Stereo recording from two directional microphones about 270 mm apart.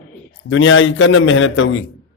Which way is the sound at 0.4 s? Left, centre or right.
Left.